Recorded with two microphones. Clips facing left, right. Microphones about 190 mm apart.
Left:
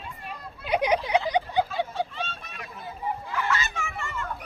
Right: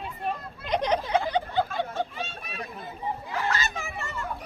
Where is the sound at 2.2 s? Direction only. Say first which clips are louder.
Left 1 dB; 10° right (ahead or behind).